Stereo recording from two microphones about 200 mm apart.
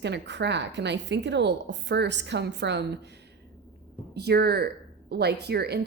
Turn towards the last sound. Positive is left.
turn(degrees=-55)  # may be behind; listen again after turning